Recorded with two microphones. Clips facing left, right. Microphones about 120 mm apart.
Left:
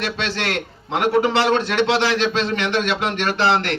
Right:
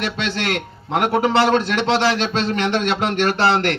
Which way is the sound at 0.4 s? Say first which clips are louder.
Right 1 dB; 45° right (ahead or behind).